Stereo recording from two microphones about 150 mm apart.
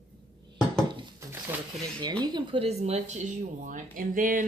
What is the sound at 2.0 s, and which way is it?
Speech, 30° right (ahead or behind).